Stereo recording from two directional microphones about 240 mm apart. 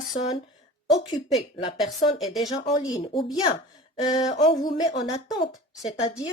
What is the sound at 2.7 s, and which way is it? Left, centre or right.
Speech, centre.